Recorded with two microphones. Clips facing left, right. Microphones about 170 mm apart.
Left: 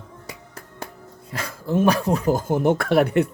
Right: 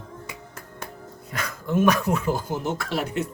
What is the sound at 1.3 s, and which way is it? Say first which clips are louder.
Speech: left 2 dB; 30° left (ahead or behind).